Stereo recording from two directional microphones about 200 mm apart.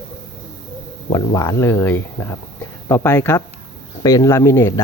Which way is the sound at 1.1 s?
20° left (ahead or behind).